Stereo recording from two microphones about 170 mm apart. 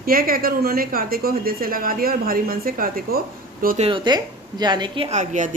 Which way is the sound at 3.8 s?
30° right (ahead or behind).